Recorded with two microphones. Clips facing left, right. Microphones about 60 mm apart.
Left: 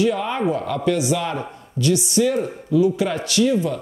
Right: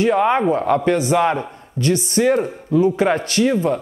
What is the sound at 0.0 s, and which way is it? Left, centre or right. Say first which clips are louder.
Speech: right 5 dB; right.